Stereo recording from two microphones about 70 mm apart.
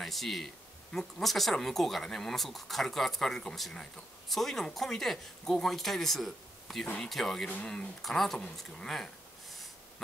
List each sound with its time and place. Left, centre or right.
0.0 s speech: centre
7.4 s speech: centre